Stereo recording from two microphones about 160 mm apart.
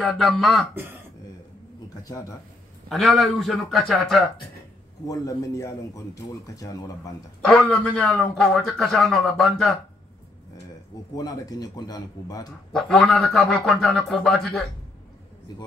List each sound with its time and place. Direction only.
0.0 s a man's voice: centre (ahead or behind)
2.0 s a man's voice: 20° left (ahead or behind)
2.9 s a man's voice: centre (ahead or behind)
5.0 s a man's voice: 20° left (ahead or behind)
7.4 s a man's voice: 5° left (ahead or behind)
11.1 s a man's voice: 25° left (ahead or behind)
12.7 s a man's voice: 5° left (ahead or behind)